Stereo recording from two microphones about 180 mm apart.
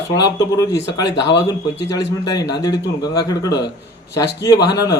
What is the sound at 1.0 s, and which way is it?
Speech, 70° left (ahead or behind).